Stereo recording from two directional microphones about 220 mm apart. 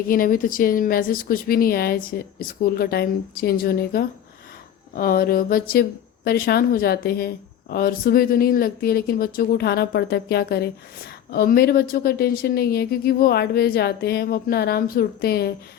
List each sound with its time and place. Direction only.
0.1 s speech: 40° left (ahead or behind)